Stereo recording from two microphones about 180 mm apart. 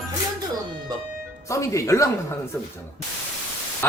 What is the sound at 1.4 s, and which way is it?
Speech, 15° left (ahead or behind).